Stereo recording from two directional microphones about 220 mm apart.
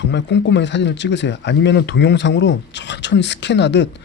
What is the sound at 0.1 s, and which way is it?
Speech, 55° left (ahead or behind).